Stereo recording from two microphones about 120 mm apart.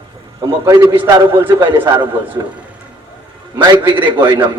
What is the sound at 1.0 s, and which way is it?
A man's voice, 40° right (ahead or behind).